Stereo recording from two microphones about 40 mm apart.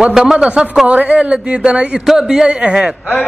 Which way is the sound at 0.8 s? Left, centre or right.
Right.